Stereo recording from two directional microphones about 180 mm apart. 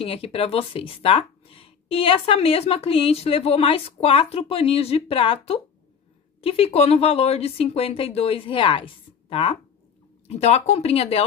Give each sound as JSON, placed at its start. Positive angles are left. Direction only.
{"t": 0.0, "sound": "speech", "side_deg": 30}